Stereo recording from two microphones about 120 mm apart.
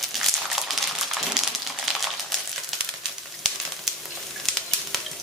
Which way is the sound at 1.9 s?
Centre (ahead or behind).